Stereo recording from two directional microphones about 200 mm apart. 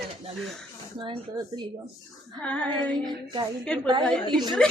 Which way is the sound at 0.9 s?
25° right (ahead or behind).